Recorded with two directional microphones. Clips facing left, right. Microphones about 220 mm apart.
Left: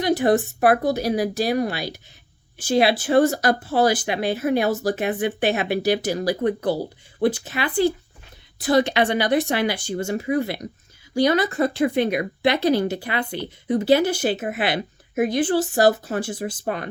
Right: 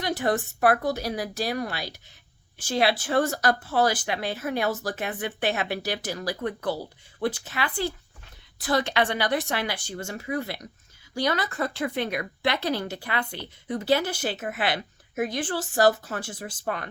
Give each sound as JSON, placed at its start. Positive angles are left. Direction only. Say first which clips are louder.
{"t": 0.0, "sound": "speech", "louder": "left 7 dB", "side_deg": 15}